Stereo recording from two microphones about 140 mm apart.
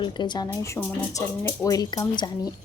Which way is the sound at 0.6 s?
20° left (ahead or behind).